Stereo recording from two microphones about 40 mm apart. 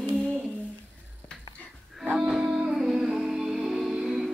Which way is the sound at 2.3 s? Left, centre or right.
Centre.